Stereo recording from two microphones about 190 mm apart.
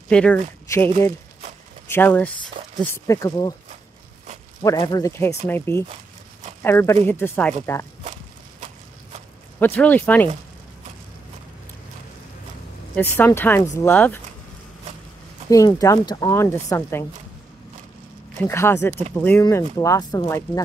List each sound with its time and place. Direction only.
0.1 s speech: 5° left (ahead or behind)
4.6 s speech: 20° left (ahead or behind)
9.6 s speech: 10° left (ahead or behind)
12.9 s speech: 10° left (ahead or behind)
15.5 s speech: 15° left (ahead or behind)
18.4 s speech: 15° left (ahead or behind)